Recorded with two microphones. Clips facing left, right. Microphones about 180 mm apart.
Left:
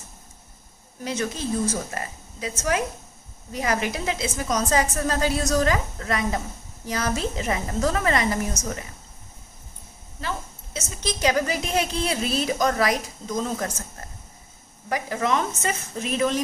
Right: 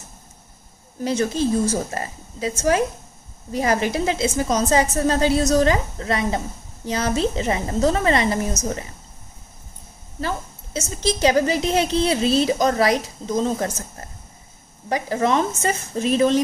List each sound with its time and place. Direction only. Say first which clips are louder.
1.0 s a woman's voice: right 7 dB; 35° right (ahead or behind)
10.2 s a woman's voice: right 5 dB; 30° right (ahead or behind)